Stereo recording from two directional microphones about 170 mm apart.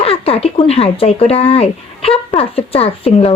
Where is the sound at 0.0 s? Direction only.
35° left (ahead or behind).